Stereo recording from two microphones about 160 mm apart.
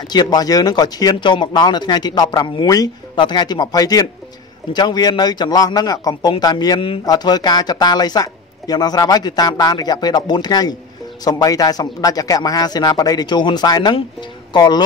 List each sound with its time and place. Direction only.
0.0 s a man's voice: 25° left (ahead or behind)